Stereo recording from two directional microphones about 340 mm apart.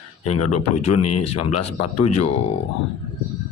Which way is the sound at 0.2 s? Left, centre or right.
Left.